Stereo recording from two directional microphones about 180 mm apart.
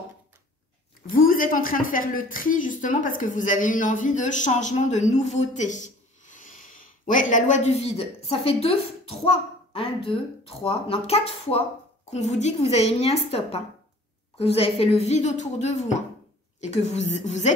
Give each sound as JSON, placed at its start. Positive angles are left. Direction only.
{"t": 1.1, "sound": "a woman's voice", "side_deg": 50}